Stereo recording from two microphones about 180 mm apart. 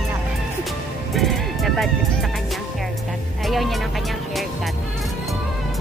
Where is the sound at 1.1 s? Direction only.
Centre (ahead or behind).